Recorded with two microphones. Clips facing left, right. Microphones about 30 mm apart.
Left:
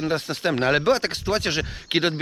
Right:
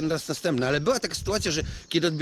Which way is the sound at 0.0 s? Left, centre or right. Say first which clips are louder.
Left 3 dB; left.